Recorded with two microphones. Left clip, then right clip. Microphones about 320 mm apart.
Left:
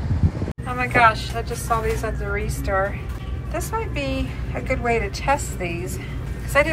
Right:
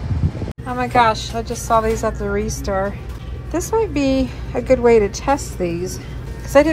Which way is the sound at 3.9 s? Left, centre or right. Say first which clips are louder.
Right 8 dB; centre.